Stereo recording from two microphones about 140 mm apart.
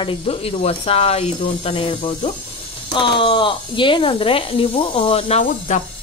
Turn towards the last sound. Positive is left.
turn(degrees=50)  # may be behind; listen again after turning